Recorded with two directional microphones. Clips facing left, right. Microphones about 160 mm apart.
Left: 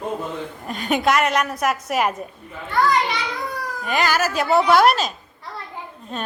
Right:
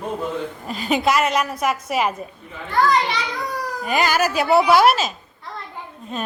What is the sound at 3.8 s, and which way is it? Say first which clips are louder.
Speech: right 1 dB; 5° right (ahead or behind).